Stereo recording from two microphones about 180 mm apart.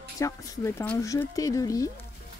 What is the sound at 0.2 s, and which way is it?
Speech, 15° left (ahead or behind).